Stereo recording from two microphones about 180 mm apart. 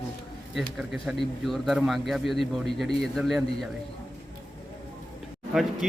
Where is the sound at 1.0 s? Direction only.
Centre (ahead or behind).